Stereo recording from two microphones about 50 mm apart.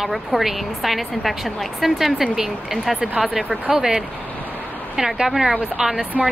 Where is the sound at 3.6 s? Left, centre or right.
Centre.